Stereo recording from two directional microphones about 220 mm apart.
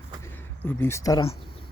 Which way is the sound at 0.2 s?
10° left (ahead or behind).